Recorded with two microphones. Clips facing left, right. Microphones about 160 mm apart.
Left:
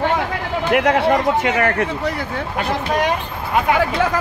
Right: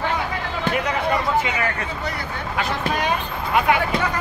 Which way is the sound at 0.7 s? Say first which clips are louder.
Left 7 dB; 75° left (ahead or behind).